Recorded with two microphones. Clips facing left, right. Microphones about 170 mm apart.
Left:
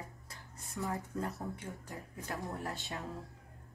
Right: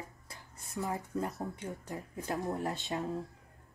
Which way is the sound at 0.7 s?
20° right (ahead or behind).